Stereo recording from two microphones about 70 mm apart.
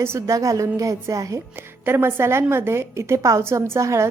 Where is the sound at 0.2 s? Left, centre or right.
Right.